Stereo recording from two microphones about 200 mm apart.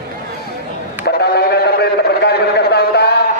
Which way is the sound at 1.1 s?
55° left (ahead or behind).